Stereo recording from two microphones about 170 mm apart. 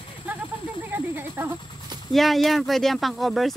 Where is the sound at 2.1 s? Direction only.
Centre (ahead or behind).